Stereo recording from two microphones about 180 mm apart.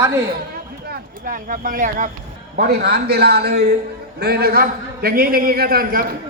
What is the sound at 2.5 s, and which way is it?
A man's voice, 60° right (ahead or behind).